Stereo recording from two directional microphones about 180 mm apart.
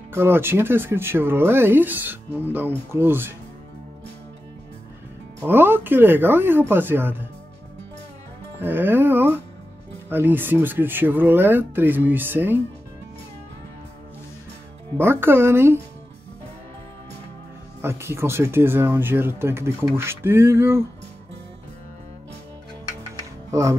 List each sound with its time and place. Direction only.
0.1 s speech: 15° right (ahead or behind)
5.5 s speech: 10° right (ahead or behind)
8.5 s speech: 10° right (ahead or behind)
15.0 s speech: 10° right (ahead or behind)
17.8 s speech: 15° right (ahead or behind)
23.5 s speech: 20° right (ahead or behind)